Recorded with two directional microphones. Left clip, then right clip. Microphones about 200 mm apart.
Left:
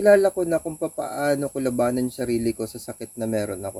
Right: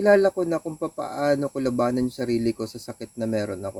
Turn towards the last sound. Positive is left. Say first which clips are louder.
# left 1 dB
turn(degrees=-15)  # may be behind; listen again after turning